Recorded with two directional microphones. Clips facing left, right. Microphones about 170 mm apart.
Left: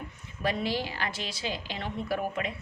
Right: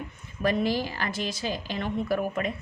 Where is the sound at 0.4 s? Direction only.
45° right (ahead or behind).